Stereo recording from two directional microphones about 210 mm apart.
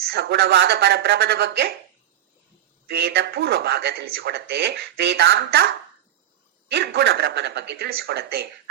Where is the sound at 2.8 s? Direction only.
50° right (ahead or behind).